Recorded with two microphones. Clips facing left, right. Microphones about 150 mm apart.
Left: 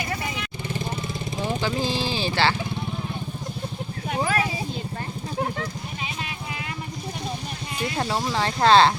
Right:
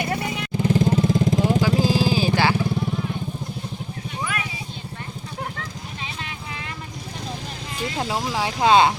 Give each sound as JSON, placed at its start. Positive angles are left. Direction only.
{"t": 0.5, "sound": "vehicle", "side_deg": -90}
{"t": 1.8, "sound": "vehicle", "side_deg": -10}
{"t": 4.2, "sound": "vehicle", "side_deg": 35}
{"t": 7.9, "sound": "speech", "side_deg": -10}